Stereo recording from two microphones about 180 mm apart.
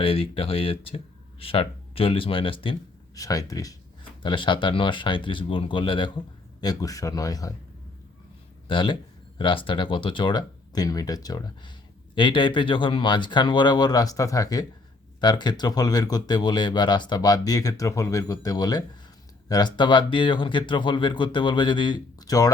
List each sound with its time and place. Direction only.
0.0 s speech: 30° left (ahead or behind)
8.6 s speech: 25° left (ahead or behind)